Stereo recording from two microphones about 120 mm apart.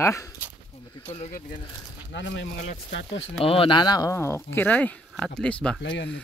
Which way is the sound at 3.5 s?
45° left (ahead or behind).